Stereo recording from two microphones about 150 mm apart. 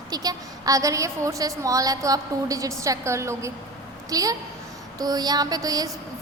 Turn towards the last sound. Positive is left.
turn(degrees=-25)  # may be behind; listen again after turning